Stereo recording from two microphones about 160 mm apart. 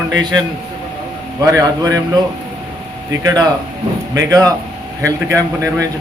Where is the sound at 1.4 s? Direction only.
25° right (ahead or behind).